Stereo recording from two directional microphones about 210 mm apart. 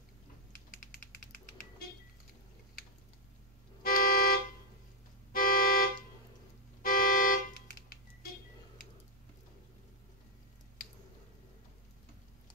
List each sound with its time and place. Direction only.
3.8 s toot: 45° left (ahead or behind)